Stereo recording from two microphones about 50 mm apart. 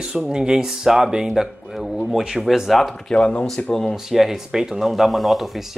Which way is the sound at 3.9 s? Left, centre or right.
Centre.